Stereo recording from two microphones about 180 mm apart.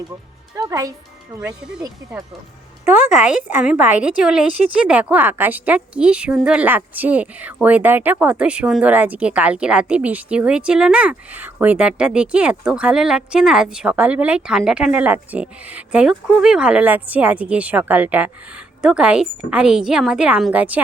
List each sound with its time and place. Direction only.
0.5 s speech: 20° right (ahead or behind)
2.8 s music: 10° right (ahead or behind)
3.4 s a woman's voice: 10° right (ahead or behind)